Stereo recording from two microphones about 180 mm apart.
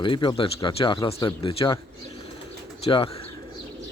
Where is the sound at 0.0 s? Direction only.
25° left (ahead or behind).